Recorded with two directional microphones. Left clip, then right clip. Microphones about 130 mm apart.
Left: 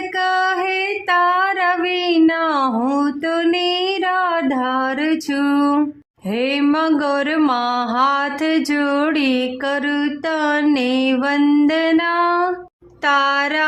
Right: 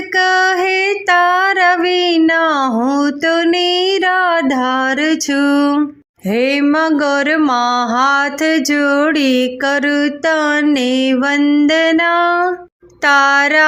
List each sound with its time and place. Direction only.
0.2 s music: 30° right (ahead or behind)
1.0 s child singing: 30° right (ahead or behind)
2.8 s a sound: 30° right (ahead or behind)
6.3 s mantra: 30° right (ahead or behind)
13.1 s speech: 35° right (ahead or behind)